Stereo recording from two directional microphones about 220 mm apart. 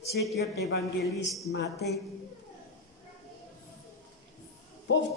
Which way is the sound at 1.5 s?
50° left (ahead or behind).